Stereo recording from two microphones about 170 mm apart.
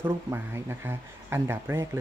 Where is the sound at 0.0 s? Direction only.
15° right (ahead or behind).